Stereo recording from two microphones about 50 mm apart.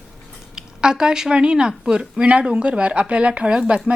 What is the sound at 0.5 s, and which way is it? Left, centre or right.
Speech, centre.